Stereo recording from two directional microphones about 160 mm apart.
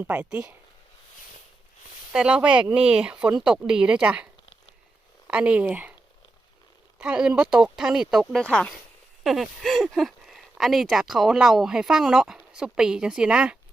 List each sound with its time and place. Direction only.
0.0 s speech: 10° right (ahead or behind)
2.1 s speech: 5° right (ahead or behind)
5.3 s speech: 5° right (ahead or behind)
7.0 s speech: 5° right (ahead or behind)